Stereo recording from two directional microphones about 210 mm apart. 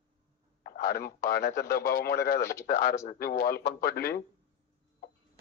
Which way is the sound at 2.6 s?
45° left (ahead or behind).